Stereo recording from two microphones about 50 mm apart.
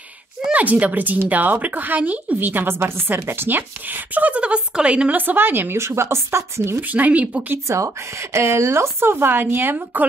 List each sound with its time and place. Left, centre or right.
0.4 s a woman's voice: right
5.1 s a woman's voice: right
5.8 s speech: right
6.8 s speech: right
7.6 s speech: right